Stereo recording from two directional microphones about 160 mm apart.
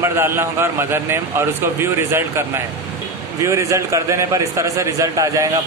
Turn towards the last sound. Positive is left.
turn(degrees=-20)  # may be behind; listen again after turning